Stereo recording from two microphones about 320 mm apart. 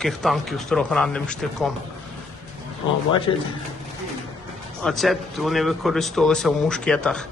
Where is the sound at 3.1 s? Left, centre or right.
Centre.